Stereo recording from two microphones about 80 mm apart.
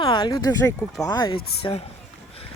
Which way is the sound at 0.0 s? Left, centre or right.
Left.